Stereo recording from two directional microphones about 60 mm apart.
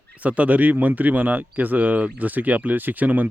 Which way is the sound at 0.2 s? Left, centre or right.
Right.